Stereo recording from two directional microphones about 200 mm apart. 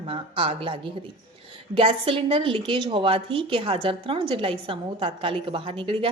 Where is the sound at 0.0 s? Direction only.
25° right (ahead or behind).